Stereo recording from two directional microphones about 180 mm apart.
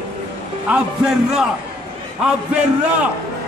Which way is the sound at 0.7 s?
5° right (ahead or behind).